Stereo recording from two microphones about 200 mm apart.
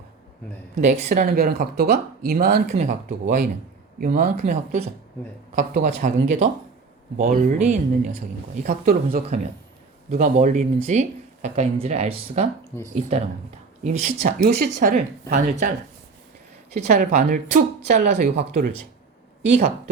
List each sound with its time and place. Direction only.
0.8 s speech: 35° right (ahead or behind); by 2.6 s 50° right (ahead or behind)
2.6 s speech: 35° right (ahead or behind)
9.2 s speech: 35° right (ahead or behind)
14.3 s speech: 50° right (ahead or behind)
14.7 s speech: 40° right (ahead or behind)
16.7 s speech: 35° right (ahead or behind)